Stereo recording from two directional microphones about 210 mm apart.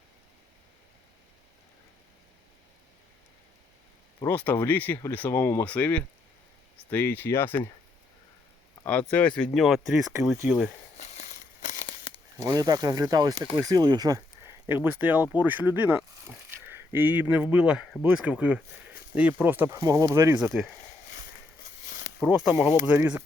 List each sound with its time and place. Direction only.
4.2 s speech: 10° left (ahead or behind)
8.9 s speech: 5° left (ahead or behind)
10.9 s a sound: 35° left (ahead or behind)
11.9 s crumpling: 25° left (ahead or behind)
12.4 s speech: 15° right (ahead or behind)
21.8 s a sound: 50° left (ahead or behind)
22.2 s speech: 5° right (ahead or behind)